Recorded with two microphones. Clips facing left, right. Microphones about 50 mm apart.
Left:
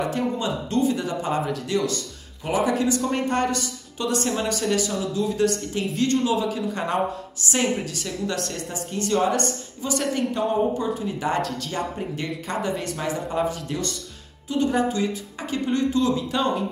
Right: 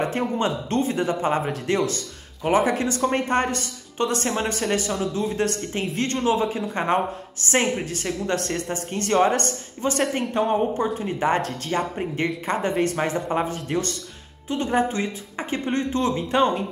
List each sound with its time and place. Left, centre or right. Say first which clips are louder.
0.4 s a woman's voice: even; right